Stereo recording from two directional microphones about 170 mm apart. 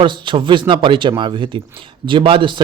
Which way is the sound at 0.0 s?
30° right (ahead or behind).